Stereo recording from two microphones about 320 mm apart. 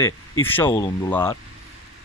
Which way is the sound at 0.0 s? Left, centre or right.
Centre.